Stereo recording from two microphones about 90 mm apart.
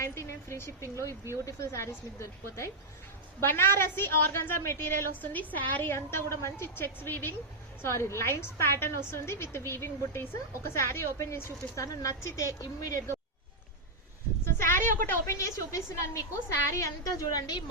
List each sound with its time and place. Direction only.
0.0 s a woman's voice: 30° left (ahead or behind)
14.4 s a woman's voice: 30° left (ahead or behind)
15.4 s a woman's voice: 35° left (ahead or behind)